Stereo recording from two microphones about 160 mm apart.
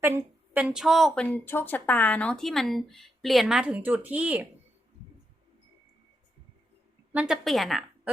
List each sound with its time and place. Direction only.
0.0 s a woman's voice: 10° right (ahead or behind)
7.1 s speech: 5° right (ahead or behind)